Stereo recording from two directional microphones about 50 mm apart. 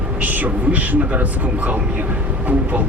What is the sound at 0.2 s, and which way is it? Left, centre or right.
Speech, right.